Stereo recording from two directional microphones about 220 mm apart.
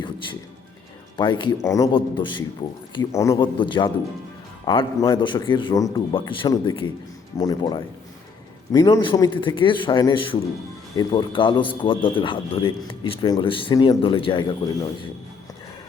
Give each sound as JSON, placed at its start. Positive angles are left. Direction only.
{"t": 1.1, "sound": "a man's voice", "side_deg": 20}